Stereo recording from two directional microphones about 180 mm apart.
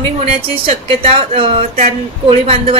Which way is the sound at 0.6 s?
35° right (ahead or behind).